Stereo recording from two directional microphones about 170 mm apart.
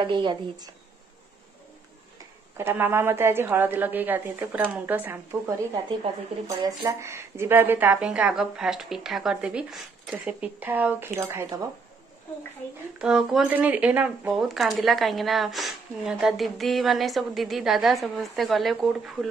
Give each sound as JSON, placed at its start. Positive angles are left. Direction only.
{"t": 0.0, "sound": "a woman's voice", "side_deg": -30}
{"t": 2.5, "sound": "a woman's voice", "side_deg": -15}
{"t": 13.0, "sound": "speech", "side_deg": -5}